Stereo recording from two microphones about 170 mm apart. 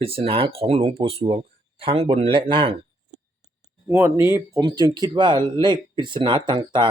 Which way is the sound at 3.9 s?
15° right (ahead or behind).